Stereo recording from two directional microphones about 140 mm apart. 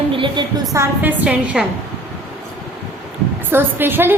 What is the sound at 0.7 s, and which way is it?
Female singing, 15° right (ahead or behind).